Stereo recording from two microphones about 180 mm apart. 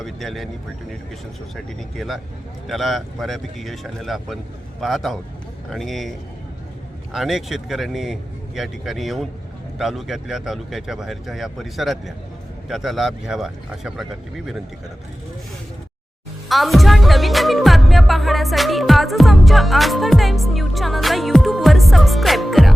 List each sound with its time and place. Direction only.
0.0 s music: centre (ahead or behind)
2.0 s music: centre (ahead or behind)
16.5 s music: centre (ahead or behind)